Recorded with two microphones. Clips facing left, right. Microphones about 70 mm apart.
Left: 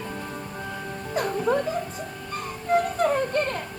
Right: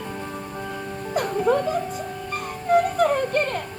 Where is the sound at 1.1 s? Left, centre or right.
Right.